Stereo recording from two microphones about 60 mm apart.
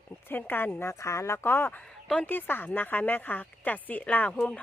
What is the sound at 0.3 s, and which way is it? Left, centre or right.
A woman's voice, left.